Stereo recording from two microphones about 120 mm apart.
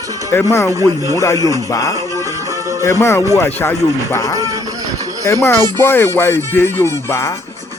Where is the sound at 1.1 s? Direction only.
25° left (ahead or behind).